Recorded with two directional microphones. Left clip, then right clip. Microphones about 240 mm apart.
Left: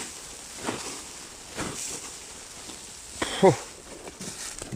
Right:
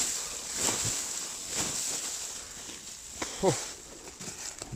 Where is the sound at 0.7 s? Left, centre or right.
Right.